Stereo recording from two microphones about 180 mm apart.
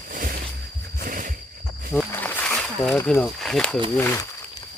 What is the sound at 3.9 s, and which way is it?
Speech, 10° left (ahead or behind).